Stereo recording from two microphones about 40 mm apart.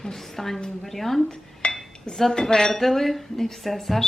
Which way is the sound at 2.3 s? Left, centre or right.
Centre.